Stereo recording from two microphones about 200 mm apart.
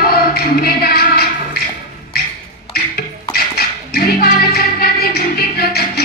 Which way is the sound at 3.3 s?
50° left (ahead or behind).